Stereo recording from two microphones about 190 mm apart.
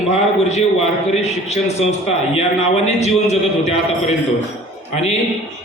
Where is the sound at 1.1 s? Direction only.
35° left (ahead or behind).